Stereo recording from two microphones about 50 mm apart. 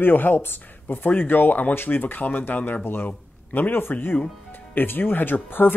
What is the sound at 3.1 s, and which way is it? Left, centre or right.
Speech, left.